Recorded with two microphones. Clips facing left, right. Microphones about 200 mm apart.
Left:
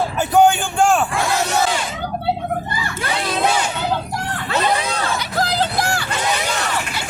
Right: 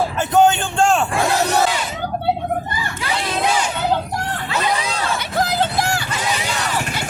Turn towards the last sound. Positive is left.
turn(degrees=-20)  # may be behind; listen again after turning